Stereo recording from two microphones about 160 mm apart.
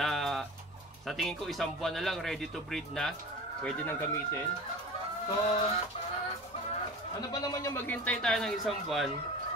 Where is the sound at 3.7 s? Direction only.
15° left (ahead or behind).